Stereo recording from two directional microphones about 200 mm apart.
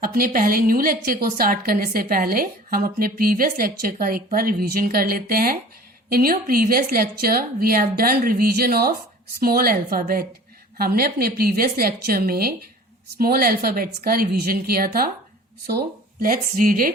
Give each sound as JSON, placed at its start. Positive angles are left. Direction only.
{"t": 0.0, "sound": "a woman's voice", "side_deg": -45}